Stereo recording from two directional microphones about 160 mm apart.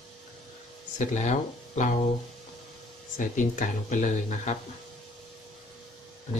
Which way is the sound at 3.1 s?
50° left (ahead or behind).